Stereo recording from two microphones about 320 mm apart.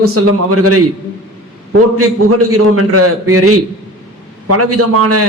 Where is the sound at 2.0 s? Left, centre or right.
Right.